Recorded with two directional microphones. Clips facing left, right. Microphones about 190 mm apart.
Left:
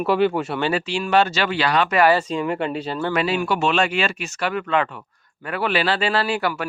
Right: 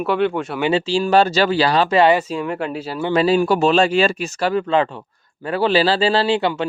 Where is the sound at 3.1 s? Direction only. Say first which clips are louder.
Right 7 dB; 35° right (ahead or behind).